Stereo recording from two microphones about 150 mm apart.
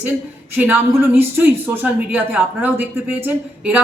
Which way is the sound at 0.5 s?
10° right (ahead or behind).